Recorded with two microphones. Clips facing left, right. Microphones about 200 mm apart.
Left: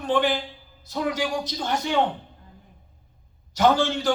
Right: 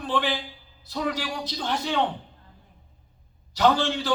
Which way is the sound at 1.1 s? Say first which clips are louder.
Left 4 dB; 45° left (ahead or behind).